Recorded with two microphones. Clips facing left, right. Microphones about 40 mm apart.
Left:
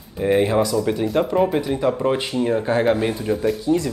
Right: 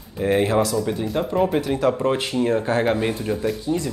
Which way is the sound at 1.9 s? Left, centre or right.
Centre.